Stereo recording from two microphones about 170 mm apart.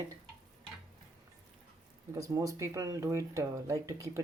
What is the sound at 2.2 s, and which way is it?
Speech, 20° right (ahead or behind).